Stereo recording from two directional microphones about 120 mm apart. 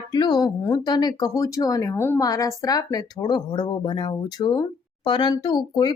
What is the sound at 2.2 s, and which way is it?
Speech, 30° left (ahead or behind).